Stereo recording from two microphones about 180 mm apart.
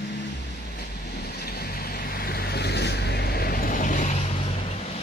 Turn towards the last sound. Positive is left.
turn(degrees=40)  # may be behind; listen again after turning